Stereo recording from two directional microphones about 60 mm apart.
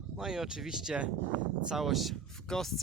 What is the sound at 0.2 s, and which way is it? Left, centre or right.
Speech, centre.